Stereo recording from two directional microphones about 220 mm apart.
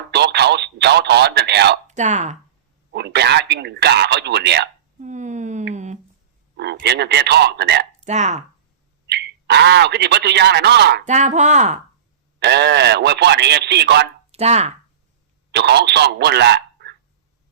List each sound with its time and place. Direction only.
0.1 s telephone: 50° right (ahead or behind)
1.9 s speech: 30° right (ahead or behind)
2.9 s speech: 50° right (ahead or behind)
4.9 s a sound: 35° right (ahead or behind)
6.6 s speech: 50° right (ahead or behind)
8.0 s speech: 30° right (ahead or behind)
9.0 s speech: 50° right (ahead or behind)
11.0 s speech: 30° right (ahead or behind)
12.4 s speech: 50° right (ahead or behind)
14.3 s speech: 30° right (ahead or behind)
15.5 s speech: 50° right (ahead or behind)